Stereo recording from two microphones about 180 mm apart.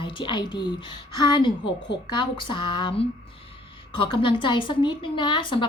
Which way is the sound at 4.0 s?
25° left (ahead or behind).